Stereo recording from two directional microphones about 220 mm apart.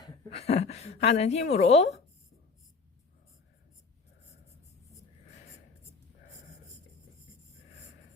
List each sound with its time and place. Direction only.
0.0 s a woman's voice: 25° left (ahead or behind)